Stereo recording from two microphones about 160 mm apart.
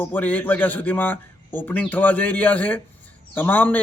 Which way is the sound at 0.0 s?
10° left (ahead or behind).